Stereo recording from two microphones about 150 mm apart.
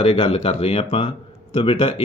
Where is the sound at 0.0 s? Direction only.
40° left (ahead or behind).